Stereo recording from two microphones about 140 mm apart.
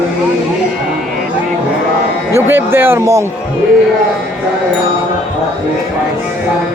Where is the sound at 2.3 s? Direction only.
15° right (ahead or behind).